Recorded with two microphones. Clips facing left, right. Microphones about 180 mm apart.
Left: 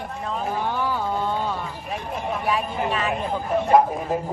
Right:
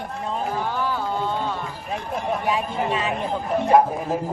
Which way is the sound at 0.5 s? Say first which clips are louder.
Left 2 dB; 15° left (ahead or behind).